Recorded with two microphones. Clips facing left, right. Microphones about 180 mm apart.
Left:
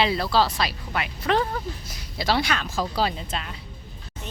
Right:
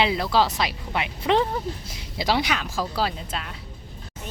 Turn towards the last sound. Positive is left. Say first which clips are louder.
# left 1 dB
turn(degrees=-5)  # may be behind; listen again after turning